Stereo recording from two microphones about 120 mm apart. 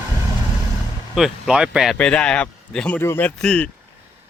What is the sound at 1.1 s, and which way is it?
Speech, 5° right (ahead or behind).